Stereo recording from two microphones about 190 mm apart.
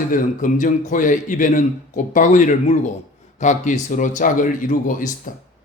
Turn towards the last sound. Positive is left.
turn(degrees=45)  # may be behind; listen again after turning